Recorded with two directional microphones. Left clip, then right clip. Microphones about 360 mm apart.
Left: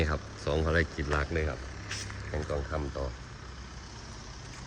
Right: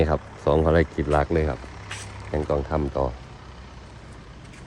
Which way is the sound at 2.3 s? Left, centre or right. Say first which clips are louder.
Right 10 dB; right.